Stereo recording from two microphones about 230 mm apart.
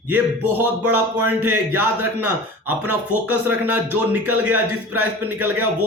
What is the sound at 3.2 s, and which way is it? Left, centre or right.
A man's voice, centre.